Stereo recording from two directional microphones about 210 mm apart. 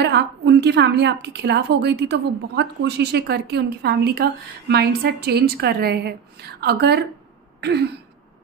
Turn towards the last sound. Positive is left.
turn(degrees=-50)  # may be behind; listen again after turning